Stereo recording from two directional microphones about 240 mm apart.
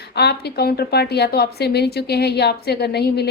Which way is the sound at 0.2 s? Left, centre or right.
Left.